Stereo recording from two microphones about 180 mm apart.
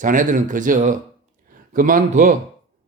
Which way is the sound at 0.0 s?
45° right (ahead or behind).